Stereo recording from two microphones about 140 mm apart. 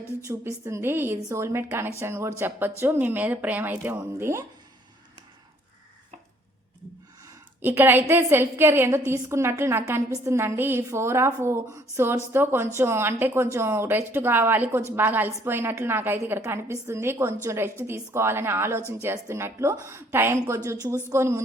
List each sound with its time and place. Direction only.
0.3 s a woman's voice: 20° right (ahead or behind)
7.6 s a woman's voice: 15° right (ahead or behind)